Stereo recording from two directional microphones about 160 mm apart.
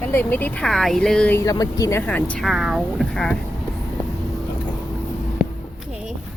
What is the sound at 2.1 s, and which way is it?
Speech, 10° left (ahead or behind).